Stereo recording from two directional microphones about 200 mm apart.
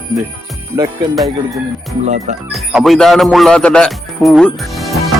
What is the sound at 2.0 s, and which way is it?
Speech, 35° right (ahead or behind).